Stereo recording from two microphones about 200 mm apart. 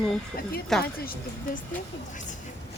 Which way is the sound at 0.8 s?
50° left (ahead or behind).